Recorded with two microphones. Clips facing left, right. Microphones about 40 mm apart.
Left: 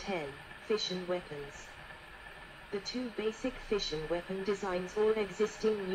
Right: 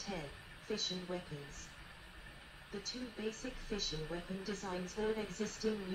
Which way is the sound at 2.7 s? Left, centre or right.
Left.